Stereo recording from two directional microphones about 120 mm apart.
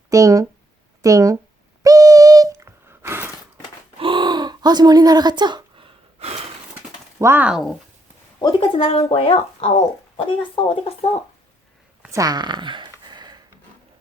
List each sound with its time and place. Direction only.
0.1 s speech: 30° right (ahead or behind)
1.8 s a sound: 30° right (ahead or behind)
3.9 s gasp: 45° right (ahead or behind)
7.2 s speech: 20° right (ahead or behind)
7.4 s speech: 5° right (ahead or behind)
8.4 s a woman's voice: 40° left (ahead or behind)
12.1 s a sound: 30° right (ahead or behind)